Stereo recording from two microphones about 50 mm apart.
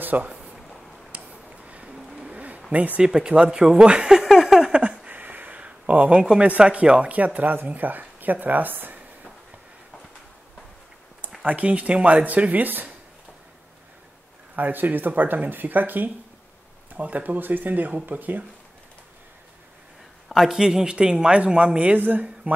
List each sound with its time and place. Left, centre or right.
0.0 s a sound: right
2.0 s vehicle: centre
2.2 s a sound: right
2.7 s speech: right
3.0 s speech: centre
4.2 s a sound: centre
5.0 s a sound: right
6.6 s speech: right
11.4 s speech: right
14.5 s speech: right
20.2 s speech: centre; by 21.9 s right
21.9 s speech: right